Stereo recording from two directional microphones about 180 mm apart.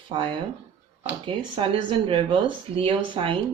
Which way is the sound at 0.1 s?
25° right (ahead or behind).